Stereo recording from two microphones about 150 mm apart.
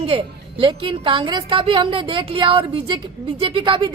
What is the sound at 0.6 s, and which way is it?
A woman's voice, 35° right (ahead or behind).